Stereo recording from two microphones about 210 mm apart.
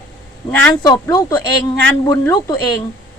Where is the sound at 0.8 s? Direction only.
20° left (ahead or behind).